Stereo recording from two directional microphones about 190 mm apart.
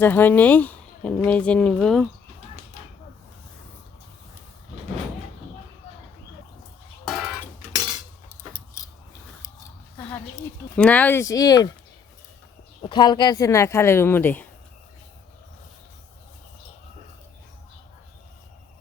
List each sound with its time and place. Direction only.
0.0 s speech: 10° left (ahead or behind)
7.1 s music: centre (ahead or behind)
10.8 s speech: 5° left (ahead or behind)
12.8 s speech: 25° left (ahead or behind)